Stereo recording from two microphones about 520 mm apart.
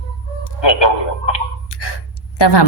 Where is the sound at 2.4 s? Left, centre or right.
Left.